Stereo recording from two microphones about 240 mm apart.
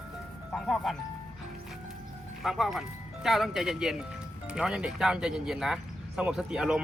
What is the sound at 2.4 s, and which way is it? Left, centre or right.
Speech, centre.